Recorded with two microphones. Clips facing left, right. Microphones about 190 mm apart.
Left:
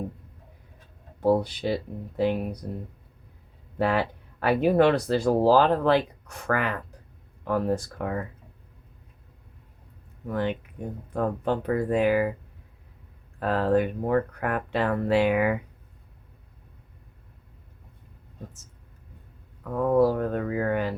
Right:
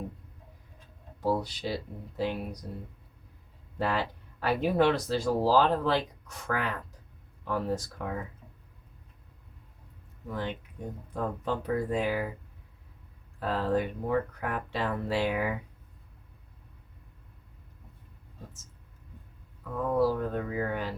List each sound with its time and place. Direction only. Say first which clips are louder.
1.2 s speech: left 7 dB; 55° left (ahead or behind)
3.8 s speech: left 5 dB; 60° left (ahead or behind)
10.2 s speech: left 7 dB; 60° left (ahead or behind)
13.4 s speech: left 5 dB; 60° left (ahead or behind)
19.7 s speech: left 5 dB; 55° left (ahead or behind)